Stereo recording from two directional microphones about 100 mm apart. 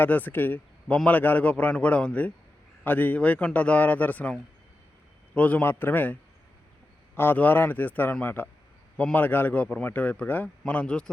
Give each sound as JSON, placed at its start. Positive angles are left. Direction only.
{"t": 0.0, "sound": "a man's voice", "side_deg": 20}
{"t": 7.2, "sound": "a man's voice", "side_deg": 20}